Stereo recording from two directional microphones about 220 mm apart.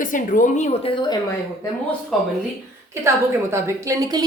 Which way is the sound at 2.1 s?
Centre (ahead or behind).